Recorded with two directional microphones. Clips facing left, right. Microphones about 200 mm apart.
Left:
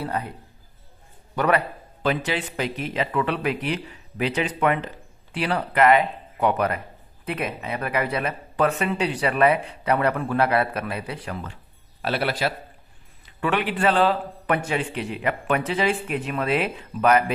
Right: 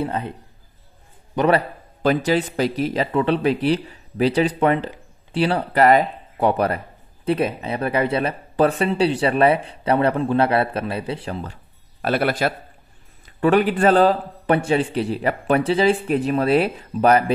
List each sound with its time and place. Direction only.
0.0 s speech: 25° right (ahead or behind)
1.3 s a man's voice: 25° right (ahead or behind)
12.0 s a man's voice: 50° right (ahead or behind)